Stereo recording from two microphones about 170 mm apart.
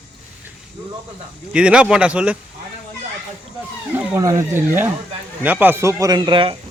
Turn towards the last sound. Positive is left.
turn(degrees=-30)  # may be behind; listen again after turning